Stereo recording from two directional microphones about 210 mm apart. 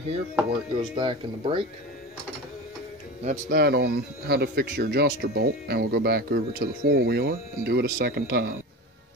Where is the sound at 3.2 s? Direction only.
40° right (ahead or behind).